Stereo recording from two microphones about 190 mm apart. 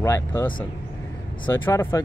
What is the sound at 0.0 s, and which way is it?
Speech, 15° left (ahead or behind).